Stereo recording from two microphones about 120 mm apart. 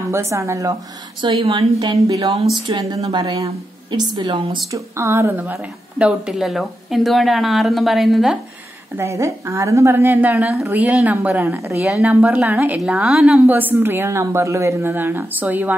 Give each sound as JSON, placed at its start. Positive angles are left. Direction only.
{"t": 0.1, "sound": "a woman's voice", "side_deg": -25}
{"t": 1.2, "sound": "a woman's voice", "side_deg": -50}
{"t": 2.7, "sound": "speech", "side_deg": -35}
{"t": 4.6, "sound": "a woman's voice", "side_deg": -25}
{"t": 8.9, "sound": "a woman's voice", "side_deg": -25}